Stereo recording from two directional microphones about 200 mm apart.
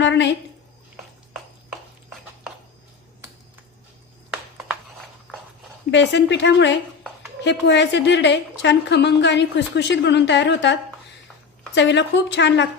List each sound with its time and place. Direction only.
0.0 s a woman's voice: 60° left (ahead or behind)
5.9 s a woman's voice: 60° left (ahead or behind)